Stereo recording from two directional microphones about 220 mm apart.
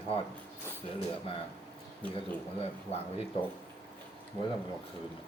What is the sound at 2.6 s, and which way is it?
Speech, 25° left (ahead or behind).